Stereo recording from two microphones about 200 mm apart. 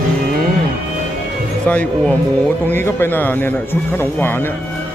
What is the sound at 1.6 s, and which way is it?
A man's voice, 10° left (ahead or behind).